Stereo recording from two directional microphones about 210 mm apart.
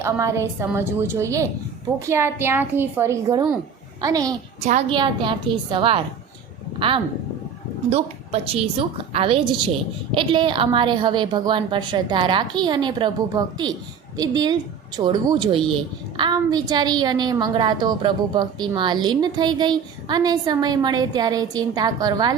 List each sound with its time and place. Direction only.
0.0 s a woman's voice: 15° right (ahead or behind)
4.6 s a woman's voice: 25° right (ahead or behind)